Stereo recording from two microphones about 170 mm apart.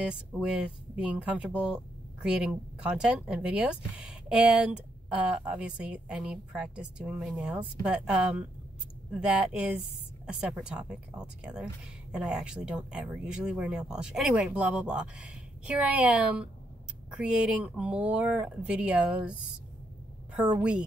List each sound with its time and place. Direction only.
0.0 s a woman's voice: 5° right (ahead or behind)